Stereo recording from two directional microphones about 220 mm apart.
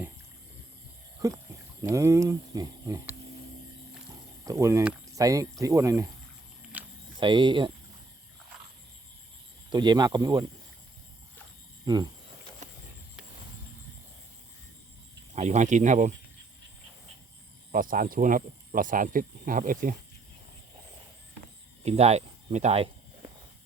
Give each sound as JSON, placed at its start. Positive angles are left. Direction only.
{"t": 1.2, "sound": "speech", "side_deg": -15}
{"t": 4.4, "sound": "speech", "side_deg": -15}
{"t": 6.7, "sound": "a sound", "side_deg": -5}
{"t": 7.2, "sound": "speech", "side_deg": -20}
{"t": 9.6, "sound": "speech", "side_deg": -20}
{"t": 11.9, "sound": "speech", "side_deg": -20}
{"t": 15.4, "sound": "speech", "side_deg": -30}
{"t": 17.7, "sound": "speech", "side_deg": -40}
{"t": 21.8, "sound": "a sound", "side_deg": -30}